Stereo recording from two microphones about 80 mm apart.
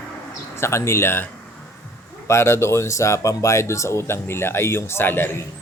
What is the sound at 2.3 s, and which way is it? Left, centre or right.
Speech, left.